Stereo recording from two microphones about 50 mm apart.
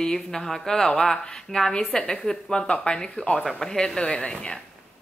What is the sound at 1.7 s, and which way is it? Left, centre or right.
Speech, left.